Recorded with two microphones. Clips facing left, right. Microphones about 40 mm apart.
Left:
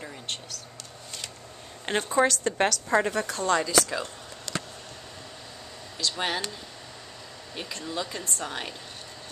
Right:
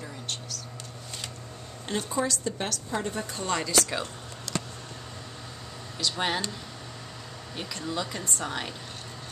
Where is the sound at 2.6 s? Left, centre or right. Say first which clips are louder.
Left 8 dB; left.